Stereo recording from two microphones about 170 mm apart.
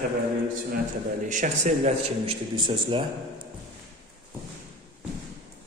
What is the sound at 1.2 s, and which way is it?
A man's voice, 45° right (ahead or behind).